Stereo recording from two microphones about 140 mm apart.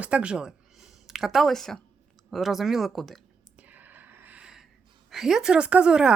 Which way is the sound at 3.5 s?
10° right (ahead or behind).